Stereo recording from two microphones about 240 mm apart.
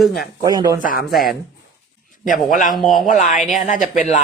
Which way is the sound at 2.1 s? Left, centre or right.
Left.